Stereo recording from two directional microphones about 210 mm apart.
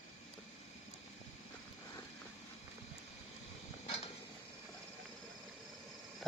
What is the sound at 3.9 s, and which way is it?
Mechanisms, 30° left (ahead or behind).